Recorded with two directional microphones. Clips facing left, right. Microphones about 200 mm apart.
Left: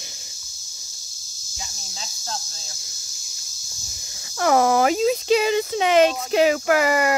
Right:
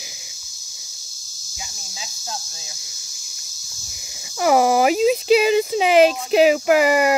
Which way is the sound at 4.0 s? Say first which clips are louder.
Right 2 dB; 10° right (ahead or behind).